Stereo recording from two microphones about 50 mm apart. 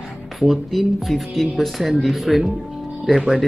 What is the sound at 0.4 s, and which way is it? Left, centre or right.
Speech, centre.